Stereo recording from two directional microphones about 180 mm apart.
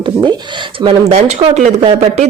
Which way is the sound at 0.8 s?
35° right (ahead or behind).